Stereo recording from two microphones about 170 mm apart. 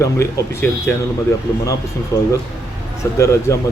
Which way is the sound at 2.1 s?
15° left (ahead or behind).